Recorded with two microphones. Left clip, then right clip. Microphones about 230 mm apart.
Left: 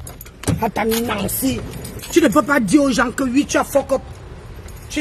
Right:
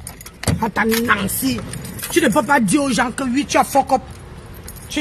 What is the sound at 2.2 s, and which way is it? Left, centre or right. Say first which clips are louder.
Speech: right 2 dB; left.